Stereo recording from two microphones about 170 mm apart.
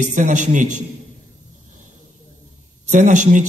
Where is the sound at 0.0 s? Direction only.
45° right (ahead or behind).